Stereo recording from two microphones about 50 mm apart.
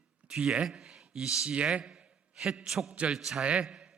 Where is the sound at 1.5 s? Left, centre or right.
Right.